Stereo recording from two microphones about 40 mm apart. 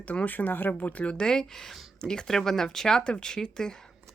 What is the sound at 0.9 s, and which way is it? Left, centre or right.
Speech, left.